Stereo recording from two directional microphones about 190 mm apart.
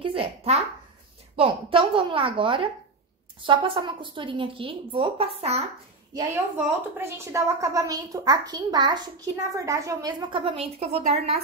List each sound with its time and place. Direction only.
0.0 s a sound: 30° right (ahead or behind)
3.3 s a woman's voice: 25° right (ahead or behind)
6.1 s a woman's voice: 10° right (ahead or behind); by 11.3 s 30° right (ahead or behind)